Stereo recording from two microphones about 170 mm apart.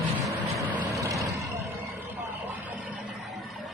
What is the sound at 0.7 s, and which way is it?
Vehicle, 20° right (ahead or behind).